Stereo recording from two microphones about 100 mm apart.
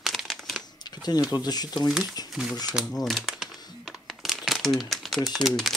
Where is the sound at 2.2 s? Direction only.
40° left (ahead or behind).